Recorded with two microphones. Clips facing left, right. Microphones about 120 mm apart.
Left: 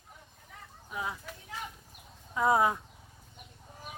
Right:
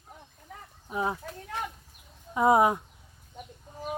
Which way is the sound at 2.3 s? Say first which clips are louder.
Right 5 dB; 20° right (ahead or behind).